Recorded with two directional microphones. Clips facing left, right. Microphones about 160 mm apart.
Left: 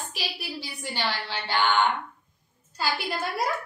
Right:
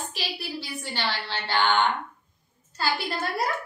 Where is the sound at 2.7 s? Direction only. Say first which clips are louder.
Right 1 dB; 10° left (ahead or behind).